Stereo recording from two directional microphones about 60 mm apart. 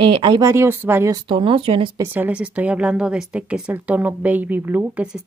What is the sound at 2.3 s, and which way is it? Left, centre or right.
Speech, right.